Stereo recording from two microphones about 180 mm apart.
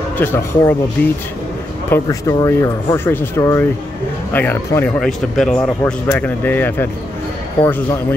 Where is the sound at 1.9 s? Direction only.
20° left (ahead or behind).